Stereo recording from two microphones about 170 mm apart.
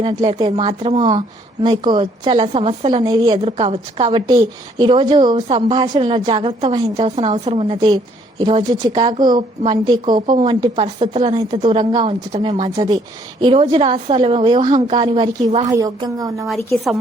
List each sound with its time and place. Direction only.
0.0 s a woman's voice: 30° right (ahead or behind)
0.9 s a woman's voice: 25° right (ahead or behind)
5.5 s a woman's voice: 40° right (ahead or behind); by 16.5 s 20° right (ahead or behind)